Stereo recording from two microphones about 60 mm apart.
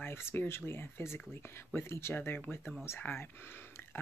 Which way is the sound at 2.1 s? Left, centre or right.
Left.